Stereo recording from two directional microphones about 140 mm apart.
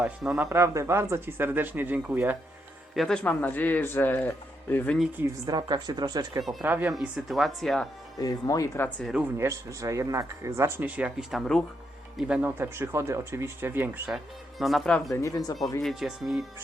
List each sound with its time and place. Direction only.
0.0 s speech: 5° right (ahead or behind)
0.5 s speech: 20° right (ahead or behind)
2.9 s speech: centre (ahead or behind)
5.5 s speech: 30° right (ahead or behind)
6.4 s speech: centre (ahead or behind)
6.7 s speech: 15° right (ahead or behind)
6.9 s speech: centre (ahead or behind)
8.2 s speech: 25° left (ahead or behind)
9.4 s speech: 20° right (ahead or behind); by 11.6 s centre (ahead or behind)
12.1 s speech: 10° right (ahead or behind)
14.6 s speech: centre (ahead or behind)
15.1 s speech: 25° left (ahead or behind)
15.8 s speech: centre (ahead or behind)